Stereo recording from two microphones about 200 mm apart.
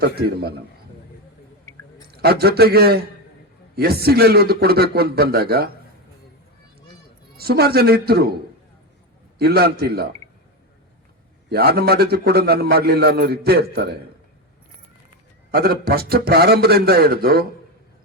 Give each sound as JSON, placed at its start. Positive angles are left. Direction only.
{"t": 0.0, "sound": "a man's voice", "side_deg": -50}
{"t": 2.0, "sound": "a man's voice", "side_deg": -50}
{"t": 7.3, "sound": "a man's voice", "side_deg": -50}
{"t": 9.4, "sound": "a man's voice", "side_deg": -50}
{"t": 11.4, "sound": "a man's voice", "side_deg": -50}
{"t": 15.5, "sound": "a man's voice", "side_deg": -50}